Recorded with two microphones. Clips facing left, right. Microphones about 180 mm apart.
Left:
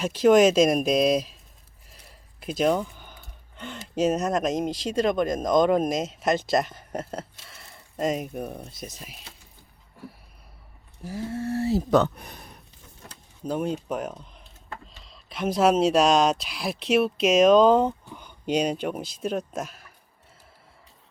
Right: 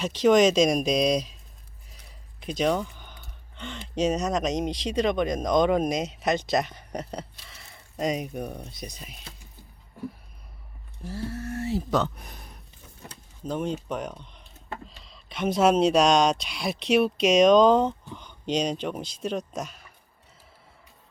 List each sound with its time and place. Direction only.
0.0 s speech: 5° left (ahead or behind)
11.0 s speech: 15° left (ahead or behind); by 11.8 s 35° left (ahead or behind)
11.9 s speech: 55° left (ahead or behind)
13.4 s speech: 10° left (ahead or behind)